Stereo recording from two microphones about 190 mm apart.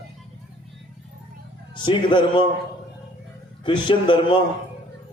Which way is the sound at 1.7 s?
25° left (ahead or behind).